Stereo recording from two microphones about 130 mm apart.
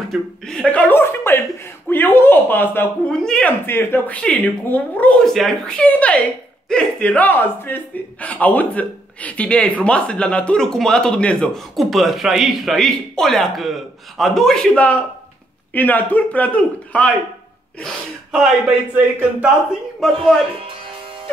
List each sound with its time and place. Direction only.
0.1 s speech: 5° left (ahead or behind)
1.9 s a sound: 15° left (ahead or behind)
3.1 s speech: 5° left (ahead or behind)
20.0 s speech: centre (ahead or behind)